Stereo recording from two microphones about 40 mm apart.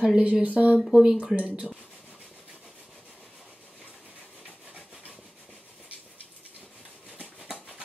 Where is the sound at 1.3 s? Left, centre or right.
Right.